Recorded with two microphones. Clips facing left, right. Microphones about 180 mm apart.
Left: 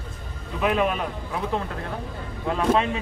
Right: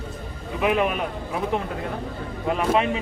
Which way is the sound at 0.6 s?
10° right (ahead or behind).